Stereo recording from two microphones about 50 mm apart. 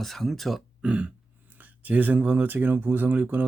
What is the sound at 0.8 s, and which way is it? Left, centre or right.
Burping, right.